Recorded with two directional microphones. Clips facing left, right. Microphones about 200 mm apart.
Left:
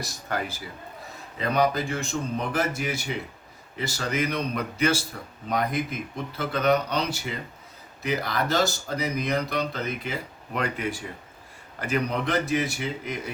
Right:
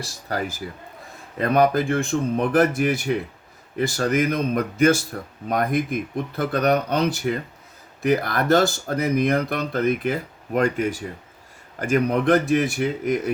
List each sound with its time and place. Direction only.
0.0 s a man's voice: 35° right (ahead or behind)
1.4 s speech: 55° right (ahead or behind)